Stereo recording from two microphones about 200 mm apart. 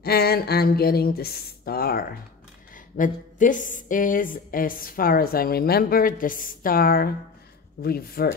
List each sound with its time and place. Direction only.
0.0 s speech: 50° left (ahead or behind)